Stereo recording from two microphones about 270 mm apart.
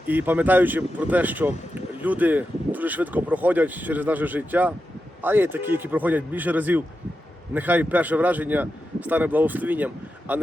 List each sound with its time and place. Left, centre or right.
0.1 s speech: centre